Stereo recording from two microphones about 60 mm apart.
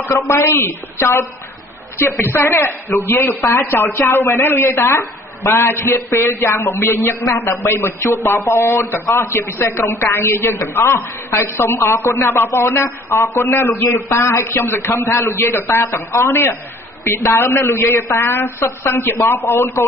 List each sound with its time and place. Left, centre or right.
0.1 s a woman's voice: left
2.3 s a woman's voice: left
14.0 s a woman's voice: left